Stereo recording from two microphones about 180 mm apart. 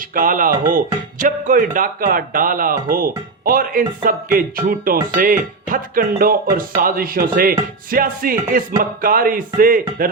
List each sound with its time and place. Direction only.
0.1 s a man's voice: 50° right (ahead or behind)